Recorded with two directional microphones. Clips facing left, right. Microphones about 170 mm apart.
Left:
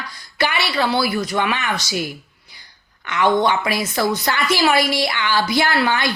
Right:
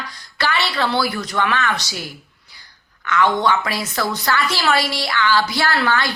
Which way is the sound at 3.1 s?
15° left (ahead or behind).